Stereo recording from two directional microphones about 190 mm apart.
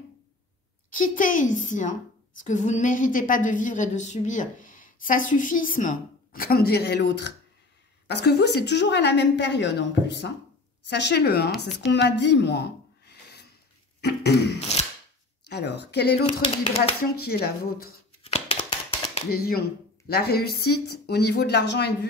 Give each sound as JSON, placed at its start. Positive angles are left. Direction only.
{"t": 0.9, "sound": "a woman's voice", "side_deg": 45}
{"t": 16.3, "sound": "speech", "side_deg": 30}
{"t": 17.2, "sound": "a woman's voice", "side_deg": 55}
{"t": 18.2, "sound": "a sound", "side_deg": 30}
{"t": 19.3, "sound": "a woman's voice", "side_deg": 55}